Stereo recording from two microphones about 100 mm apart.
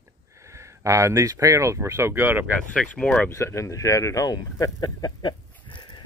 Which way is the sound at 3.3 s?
30° left (ahead or behind).